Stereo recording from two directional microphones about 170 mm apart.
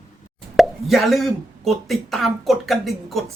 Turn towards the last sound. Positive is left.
turn(degrees=0)  # may be behind; listen again after turning